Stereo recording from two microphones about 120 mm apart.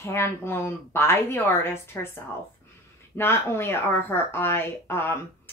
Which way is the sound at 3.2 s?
20° left (ahead or behind).